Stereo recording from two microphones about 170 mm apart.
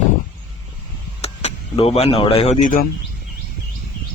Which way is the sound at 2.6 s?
45° left (ahead or behind).